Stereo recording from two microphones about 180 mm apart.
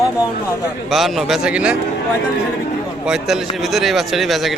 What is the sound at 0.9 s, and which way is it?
Speech, centre (ahead or behind).